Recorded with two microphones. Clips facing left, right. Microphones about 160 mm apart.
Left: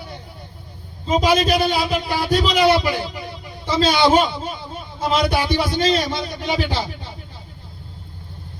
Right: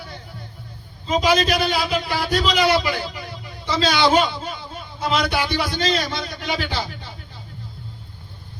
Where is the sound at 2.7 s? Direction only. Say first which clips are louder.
Left 3 dB; 30° left (ahead or behind).